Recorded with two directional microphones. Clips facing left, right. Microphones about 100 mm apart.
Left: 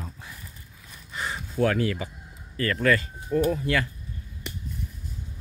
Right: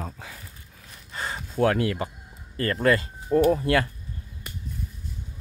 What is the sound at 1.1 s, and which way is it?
Speech, 35° right (ahead or behind).